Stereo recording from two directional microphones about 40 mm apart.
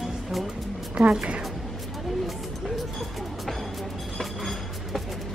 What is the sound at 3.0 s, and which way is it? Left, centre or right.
Music, centre.